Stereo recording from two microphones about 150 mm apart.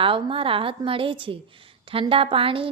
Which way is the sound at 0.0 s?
35° right (ahead or behind).